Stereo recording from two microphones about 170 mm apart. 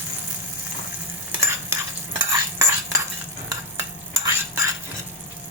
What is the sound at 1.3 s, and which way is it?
Stir, 15° right (ahead or behind).